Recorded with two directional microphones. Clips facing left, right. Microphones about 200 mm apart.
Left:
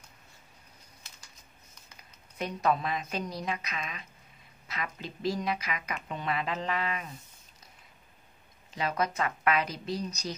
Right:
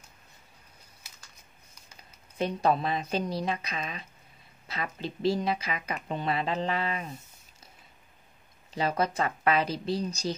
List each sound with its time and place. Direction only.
2.3 s a woman's voice: 30° right (ahead or behind)
8.7 s a woman's voice: 30° right (ahead or behind)